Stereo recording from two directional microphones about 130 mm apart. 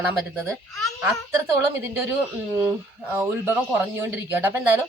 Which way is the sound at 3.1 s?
20° right (ahead or behind).